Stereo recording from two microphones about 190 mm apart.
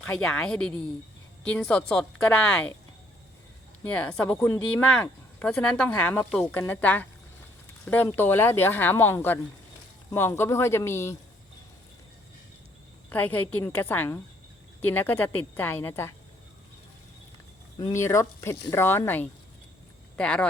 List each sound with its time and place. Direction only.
0.0 s speech: 5° left (ahead or behind)
3.8 s speech: 5° left (ahead or behind)
13.1 s speech: 10° left (ahead or behind)
17.7 s speech: 20° left (ahead or behind)